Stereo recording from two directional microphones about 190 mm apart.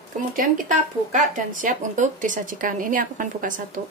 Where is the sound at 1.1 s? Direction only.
45° right (ahead or behind).